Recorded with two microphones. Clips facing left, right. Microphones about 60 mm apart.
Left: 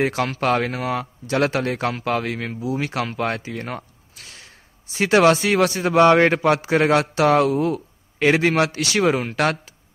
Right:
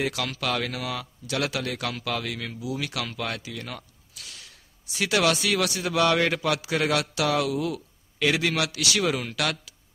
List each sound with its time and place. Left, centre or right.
0.0 s speech: left